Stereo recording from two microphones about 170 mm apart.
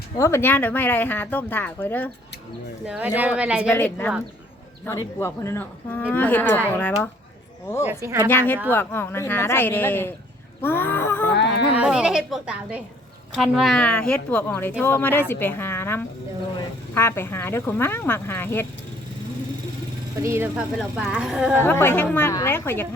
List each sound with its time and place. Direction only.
0.2 s speech: 15° left (ahead or behind)
2.8 s speech: 10° right (ahead or behind)
3.7 s speech: 15° left (ahead or behind)
7.9 s speech: 15° right (ahead or behind)
8.3 s speech: 10° left (ahead or behind)
11.3 s speech: 90° left
11.7 s speech: 5° right (ahead or behind); by 18.6 s 10° left (ahead or behind)
20.1 s speech: 15° right (ahead or behind)
21.5 s speech: 15° left (ahead or behind)